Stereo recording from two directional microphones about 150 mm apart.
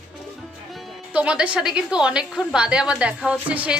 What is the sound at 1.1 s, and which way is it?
A woman's voice, 5° right (ahead or behind).